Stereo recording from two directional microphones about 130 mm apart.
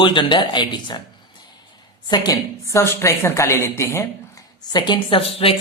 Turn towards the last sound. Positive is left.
turn(degrees=45)  # may be behind; listen again after turning